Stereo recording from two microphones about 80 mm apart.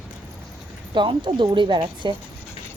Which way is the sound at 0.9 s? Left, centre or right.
Right.